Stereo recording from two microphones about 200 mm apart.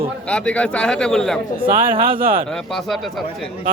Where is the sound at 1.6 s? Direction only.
25° right (ahead or behind).